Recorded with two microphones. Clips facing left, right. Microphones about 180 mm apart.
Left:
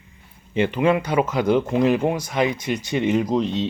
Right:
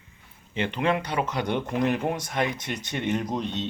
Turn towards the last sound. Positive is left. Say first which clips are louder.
# left 8 dB
turn(degrees=90)